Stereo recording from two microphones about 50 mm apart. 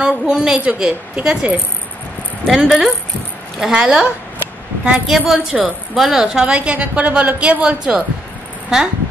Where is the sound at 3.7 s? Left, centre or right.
Centre.